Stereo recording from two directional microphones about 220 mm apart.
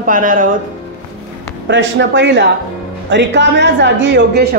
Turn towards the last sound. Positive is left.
turn(degrees=-50)  # may be behind; listen again after turning